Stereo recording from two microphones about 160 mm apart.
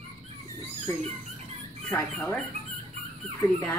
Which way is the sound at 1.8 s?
10° left (ahead or behind).